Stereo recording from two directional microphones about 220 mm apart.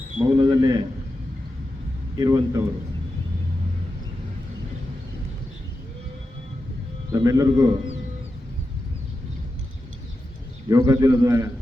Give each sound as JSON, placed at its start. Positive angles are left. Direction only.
{"t": 0.3, "sound": "a sound", "side_deg": -20}
{"t": 2.1, "sound": "a man's voice", "side_deg": -15}
{"t": 7.1, "sound": "a man's voice", "side_deg": -15}
{"t": 10.7, "sound": "a man's voice", "side_deg": -15}